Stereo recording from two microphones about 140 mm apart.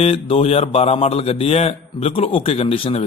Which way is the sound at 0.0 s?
45° left (ahead or behind).